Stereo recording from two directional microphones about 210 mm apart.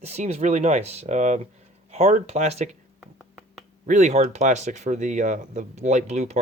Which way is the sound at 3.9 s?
35° right (ahead or behind).